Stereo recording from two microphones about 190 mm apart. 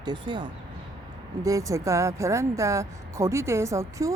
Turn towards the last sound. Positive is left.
turn(degrees=-15)  # may be behind; listen again after turning